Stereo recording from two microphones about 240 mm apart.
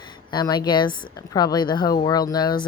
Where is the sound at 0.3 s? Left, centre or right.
Centre.